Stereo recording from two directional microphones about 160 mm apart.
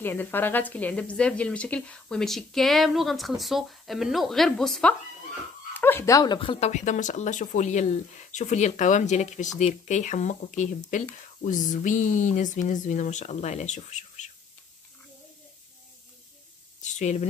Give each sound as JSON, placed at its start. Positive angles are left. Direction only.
{"t": 0.0, "sound": "speech", "side_deg": 15}
{"t": 6.7, "sound": "speech", "side_deg": 50}
{"t": 16.8, "sound": "a sound", "side_deg": 45}